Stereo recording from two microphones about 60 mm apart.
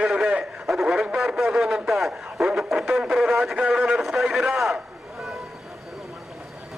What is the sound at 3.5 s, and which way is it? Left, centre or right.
A man's voice, centre.